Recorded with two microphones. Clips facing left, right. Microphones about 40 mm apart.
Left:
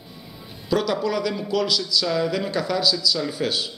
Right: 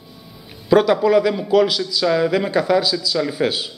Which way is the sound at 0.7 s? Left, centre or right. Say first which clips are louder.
Right 9 dB; right.